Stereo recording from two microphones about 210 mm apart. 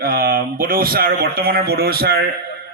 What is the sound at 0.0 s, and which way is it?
Speech, 45° right (ahead or behind).